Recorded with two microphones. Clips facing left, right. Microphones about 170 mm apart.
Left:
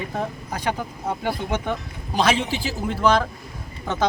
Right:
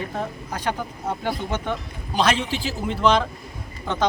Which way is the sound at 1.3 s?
10° left (ahead or behind).